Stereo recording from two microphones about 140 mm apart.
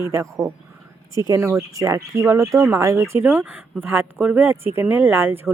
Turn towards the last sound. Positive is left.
turn(degrees=-15)  # may be behind; listen again after turning